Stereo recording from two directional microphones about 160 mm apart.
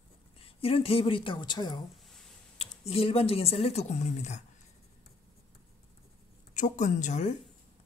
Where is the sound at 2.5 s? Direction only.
40° left (ahead or behind).